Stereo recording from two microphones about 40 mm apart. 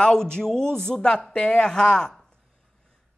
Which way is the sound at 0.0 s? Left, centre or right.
Centre.